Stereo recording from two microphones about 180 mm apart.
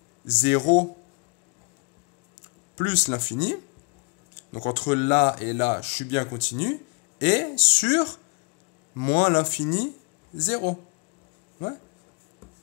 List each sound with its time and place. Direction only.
0.4 s speech: 40° left (ahead or behind)
2.7 s speech: 45° left (ahead or behind)
7.2 s speech: 45° left (ahead or behind)